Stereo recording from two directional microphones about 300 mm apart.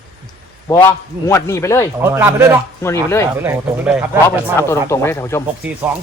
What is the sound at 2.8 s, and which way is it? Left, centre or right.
Speech, centre.